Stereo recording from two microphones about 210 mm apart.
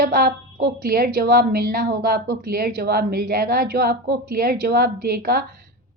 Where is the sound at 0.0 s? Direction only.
45° right (ahead or behind).